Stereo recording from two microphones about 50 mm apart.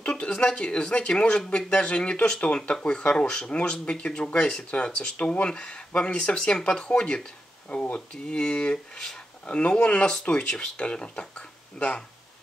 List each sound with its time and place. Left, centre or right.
0.2 s speech: left